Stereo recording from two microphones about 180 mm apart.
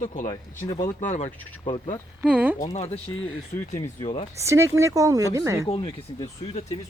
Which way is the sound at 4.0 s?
35° left (ahead or behind).